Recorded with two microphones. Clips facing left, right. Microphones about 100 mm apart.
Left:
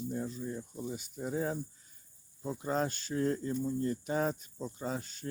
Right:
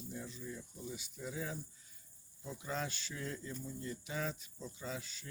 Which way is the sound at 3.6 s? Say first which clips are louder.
Left 11 dB; 45° left (ahead or behind).